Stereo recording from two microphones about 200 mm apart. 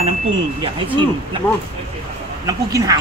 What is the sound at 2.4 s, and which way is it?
Speech, 20° right (ahead or behind).